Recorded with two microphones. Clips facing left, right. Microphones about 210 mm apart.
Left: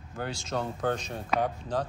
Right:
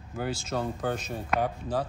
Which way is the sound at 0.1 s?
5° right (ahead or behind).